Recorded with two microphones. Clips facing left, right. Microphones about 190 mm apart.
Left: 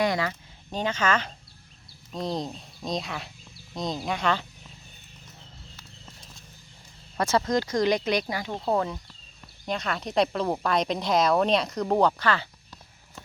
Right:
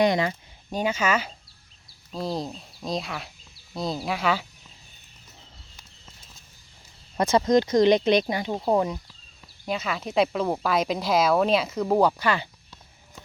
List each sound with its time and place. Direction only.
0.0 s a woman's voice: 20° right (ahead or behind); by 4.4 s 5° right (ahead or behind)
7.2 s speech: 20° right (ahead or behind)
9.6 s a woman's voice: 5° right (ahead or behind)